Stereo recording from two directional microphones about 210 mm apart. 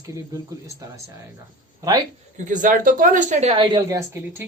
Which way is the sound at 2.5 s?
40° right (ahead or behind).